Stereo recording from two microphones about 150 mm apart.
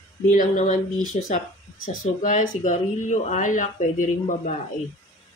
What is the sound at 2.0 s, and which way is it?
Speech, 60° left (ahead or behind).